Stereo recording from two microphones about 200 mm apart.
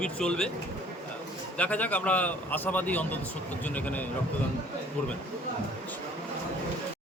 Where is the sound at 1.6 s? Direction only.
5° left (ahead or behind).